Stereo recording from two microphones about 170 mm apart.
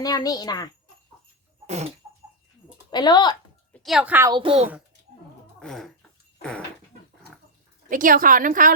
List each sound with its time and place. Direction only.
0.0 s a child's voice: 20° left (ahead or behind)
1.6 s a sound: 40° right (ahead or behind)
2.9 s a child's voice: 25° left (ahead or behind)
3.8 s a woman's voice: 5° right (ahead or behind)
4.3 s speech: 30° right (ahead or behind)
5.5 s dog: 5° left (ahead or behind)
7.9 s a woman's voice: 50° right (ahead or behind)